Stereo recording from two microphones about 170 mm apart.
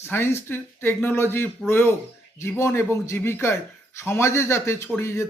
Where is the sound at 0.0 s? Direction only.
15° left (ahead or behind).